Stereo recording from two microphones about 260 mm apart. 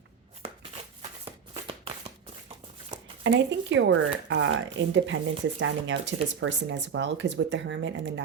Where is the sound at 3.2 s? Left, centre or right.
Right.